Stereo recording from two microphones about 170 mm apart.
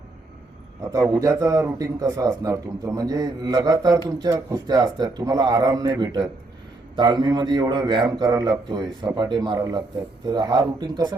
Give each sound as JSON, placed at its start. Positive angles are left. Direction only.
{"t": 0.9, "sound": "a man's voice", "side_deg": -20}